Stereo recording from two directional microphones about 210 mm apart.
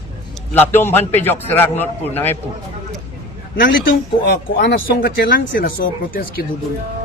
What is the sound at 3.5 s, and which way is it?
Speech, 55° left (ahead or behind).